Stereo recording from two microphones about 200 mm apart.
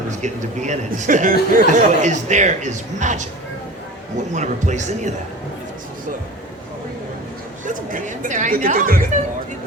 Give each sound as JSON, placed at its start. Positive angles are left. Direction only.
{"t": 0.1, "sound": "a man's voice", "side_deg": -35}
{"t": 4.3, "sound": "a man's voice", "side_deg": -35}
{"t": 7.6, "sound": "a man's voice", "side_deg": -40}